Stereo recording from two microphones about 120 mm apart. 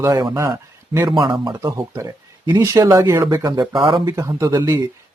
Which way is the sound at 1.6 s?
25° right (ahead or behind).